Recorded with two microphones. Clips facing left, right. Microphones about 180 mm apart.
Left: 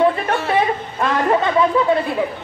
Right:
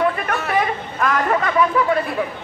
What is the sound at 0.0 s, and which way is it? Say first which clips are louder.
Chatter: left 4 dB; 30° left (ahead or behind).